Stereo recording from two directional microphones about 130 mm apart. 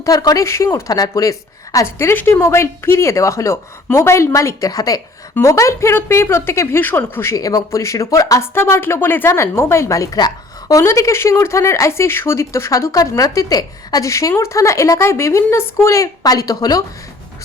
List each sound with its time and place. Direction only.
0.0 s a woman's voice: 25° left (ahead or behind)